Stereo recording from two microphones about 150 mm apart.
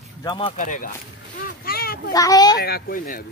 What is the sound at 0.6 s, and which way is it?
Speech, 60° left (ahead or behind).